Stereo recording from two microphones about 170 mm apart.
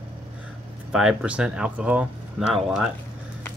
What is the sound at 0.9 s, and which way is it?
Speech, 5° right (ahead or behind).